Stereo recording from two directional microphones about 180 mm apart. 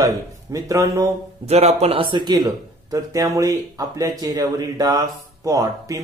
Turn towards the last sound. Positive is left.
turn(degrees=-20)  # may be behind; listen again after turning